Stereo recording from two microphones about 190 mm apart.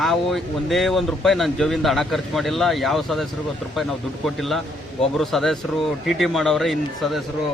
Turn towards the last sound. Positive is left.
turn(degrees=0)  # may be behind; listen again after turning